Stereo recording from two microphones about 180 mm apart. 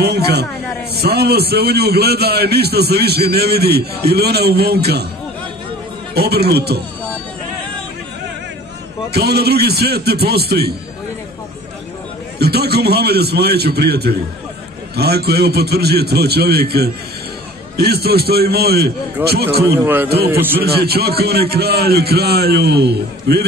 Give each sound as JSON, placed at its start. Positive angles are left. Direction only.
{"t": 0.0, "sound": "a man's voice", "side_deg": -65}
{"t": 6.1, "sound": "a man's voice", "side_deg": -60}
{"t": 9.1, "sound": "a man's voice", "side_deg": -65}
{"t": 12.4, "sound": "a man's voice", "side_deg": -65}
{"t": 19.8, "sound": "a man's voice", "side_deg": -10}
{"t": 20.6, "sound": "a man's voice", "side_deg": -60}